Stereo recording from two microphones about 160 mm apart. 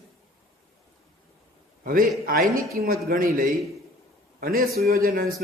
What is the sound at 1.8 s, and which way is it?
A man's voice, 60° right (ahead or behind).